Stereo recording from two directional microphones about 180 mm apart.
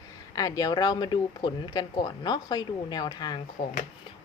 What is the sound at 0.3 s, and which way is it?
Speech, 20° left (ahead or behind).